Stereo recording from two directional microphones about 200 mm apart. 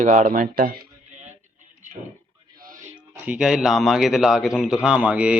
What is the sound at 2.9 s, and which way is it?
Speech, 5° right (ahead or behind).